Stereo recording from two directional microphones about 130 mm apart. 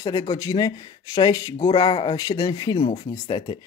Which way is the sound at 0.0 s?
30° left (ahead or behind).